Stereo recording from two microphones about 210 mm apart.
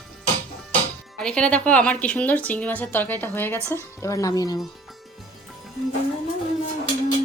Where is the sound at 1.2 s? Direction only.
5° left (ahead or behind).